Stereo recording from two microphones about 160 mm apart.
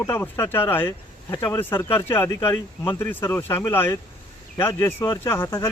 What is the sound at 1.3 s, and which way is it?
Speech, 25° left (ahead or behind).